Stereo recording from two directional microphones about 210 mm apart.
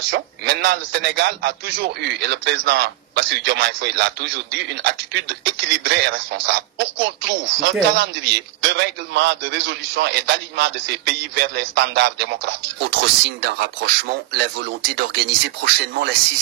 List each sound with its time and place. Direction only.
0.1 s a man's voice: 50° right (ahead or behind)
8.7 s a man's voice: 55° right (ahead or behind)